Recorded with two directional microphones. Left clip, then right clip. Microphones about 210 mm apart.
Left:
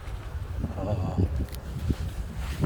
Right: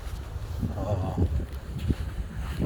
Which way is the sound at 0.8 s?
5° right (ahead or behind).